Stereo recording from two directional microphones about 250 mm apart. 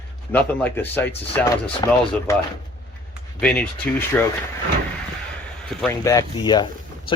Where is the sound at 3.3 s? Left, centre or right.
Centre.